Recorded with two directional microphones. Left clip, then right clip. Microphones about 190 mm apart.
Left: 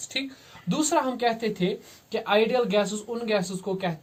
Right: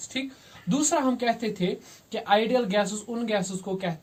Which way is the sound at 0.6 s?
25° left (ahead or behind).